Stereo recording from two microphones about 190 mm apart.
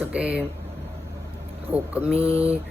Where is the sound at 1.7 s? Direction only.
5° right (ahead or behind).